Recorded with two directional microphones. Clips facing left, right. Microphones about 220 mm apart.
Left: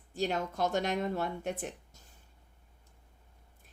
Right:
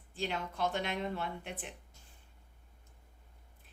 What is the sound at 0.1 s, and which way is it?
A woman's voice, 40° left (ahead or behind).